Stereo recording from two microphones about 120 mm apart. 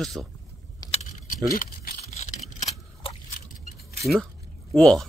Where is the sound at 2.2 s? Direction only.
70° left (ahead or behind).